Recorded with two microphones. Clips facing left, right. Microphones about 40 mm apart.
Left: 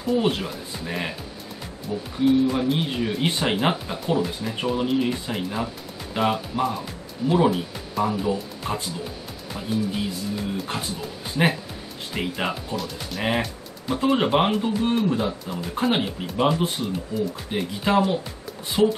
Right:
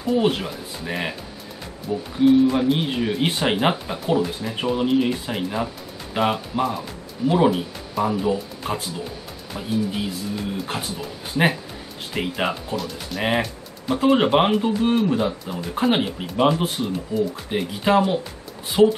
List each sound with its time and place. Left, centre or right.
0.0 s speech: centre
2.1 s speech: centre
13.4 s music: centre
14.1 s speech: centre